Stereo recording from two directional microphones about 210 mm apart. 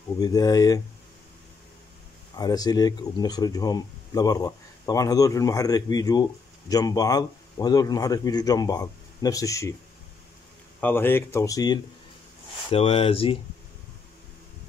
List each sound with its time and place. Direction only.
0.2 s speech: 15° left (ahead or behind)
2.3 s speech: 20° left (ahead or behind)
10.8 s speech: 10° left (ahead or behind)
12.6 s speech: 30° left (ahead or behind)